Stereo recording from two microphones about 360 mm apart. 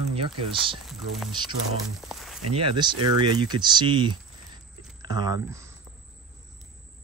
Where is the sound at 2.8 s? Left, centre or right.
Centre.